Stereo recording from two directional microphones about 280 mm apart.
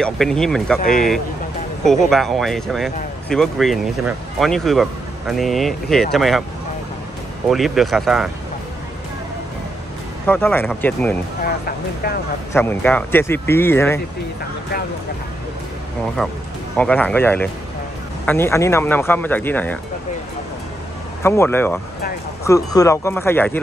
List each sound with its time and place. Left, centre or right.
0.0 s speech: centre
7.4 s speech: centre
10.2 s speech: centre
11.4 s speech: left
12.5 s speech: centre
16.2 s speech: centre
21.2 s speech: centre